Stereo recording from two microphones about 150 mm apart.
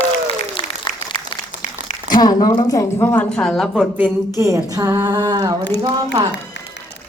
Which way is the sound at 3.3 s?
5° left (ahead or behind).